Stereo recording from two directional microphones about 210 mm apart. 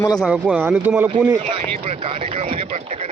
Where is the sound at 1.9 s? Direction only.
30° right (ahead or behind).